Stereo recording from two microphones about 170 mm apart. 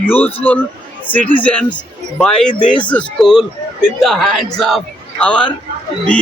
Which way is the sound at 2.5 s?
50° left (ahead or behind).